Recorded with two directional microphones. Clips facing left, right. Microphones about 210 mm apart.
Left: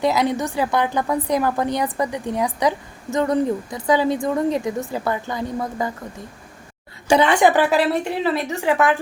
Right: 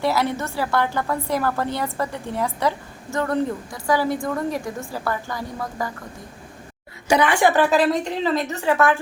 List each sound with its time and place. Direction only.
0.0 s a woman's voice: 15° left (ahead or behind)
7.1 s a woman's voice: 25° left (ahead or behind)